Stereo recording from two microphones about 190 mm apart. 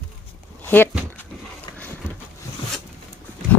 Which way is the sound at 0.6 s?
10° left (ahead or behind).